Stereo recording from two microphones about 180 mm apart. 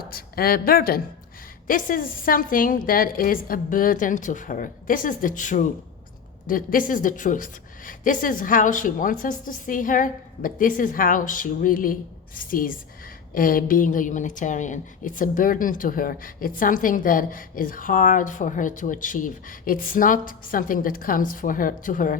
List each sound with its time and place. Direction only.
0.1 s a woman's voice: 55° left (ahead or behind)